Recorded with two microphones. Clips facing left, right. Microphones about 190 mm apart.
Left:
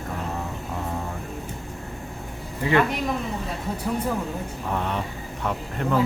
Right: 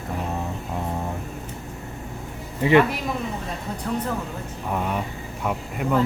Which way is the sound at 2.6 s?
20° right (ahead or behind).